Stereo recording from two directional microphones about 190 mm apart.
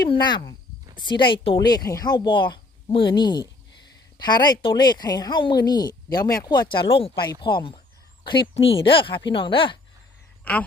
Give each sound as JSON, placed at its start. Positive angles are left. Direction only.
{"t": 0.0, "sound": "speech", "side_deg": 25}